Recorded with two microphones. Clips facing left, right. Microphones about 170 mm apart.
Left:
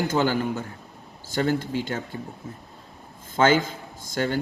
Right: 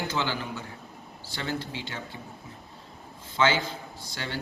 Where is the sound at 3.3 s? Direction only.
45° left (ahead or behind).